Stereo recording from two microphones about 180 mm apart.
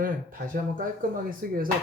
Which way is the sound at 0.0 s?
50° right (ahead or behind).